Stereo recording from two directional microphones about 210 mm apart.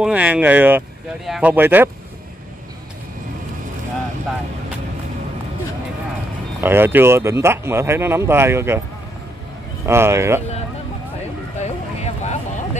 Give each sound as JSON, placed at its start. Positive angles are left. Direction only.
{"t": 0.0, "sound": "speech", "side_deg": -5}
{"t": 6.6, "sound": "speech", "side_deg": -10}
{"t": 9.8, "sound": "speech", "side_deg": -10}
{"t": 11.6, "sound": "vehicle", "side_deg": 30}